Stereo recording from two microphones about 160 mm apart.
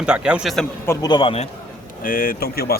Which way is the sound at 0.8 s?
15° left (ahead or behind).